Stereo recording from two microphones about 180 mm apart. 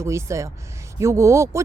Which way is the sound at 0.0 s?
15° right (ahead or behind).